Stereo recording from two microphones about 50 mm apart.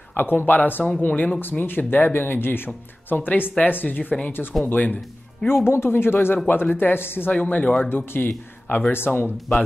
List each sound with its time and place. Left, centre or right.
0.1 s speech: left
5.7 s speech: left
7.3 s speech: left
7.9 s speech: left